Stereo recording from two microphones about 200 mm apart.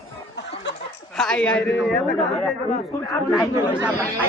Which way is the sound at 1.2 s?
5° left (ahead or behind).